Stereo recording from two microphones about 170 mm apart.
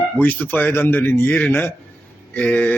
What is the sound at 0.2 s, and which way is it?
Speech, 10° left (ahead or behind).